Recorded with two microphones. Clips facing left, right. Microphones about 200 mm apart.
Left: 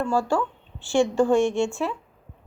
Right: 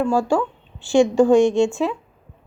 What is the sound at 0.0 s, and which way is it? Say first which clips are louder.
A woman's voice: right 4 dB; 10° right (ahead or behind).